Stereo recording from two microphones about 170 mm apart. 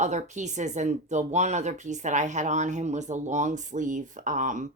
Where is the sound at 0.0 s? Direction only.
45° right (ahead or behind).